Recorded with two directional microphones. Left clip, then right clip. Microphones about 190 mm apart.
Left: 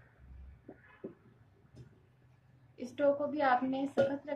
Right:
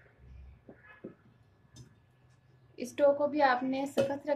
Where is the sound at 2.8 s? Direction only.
30° right (ahead or behind).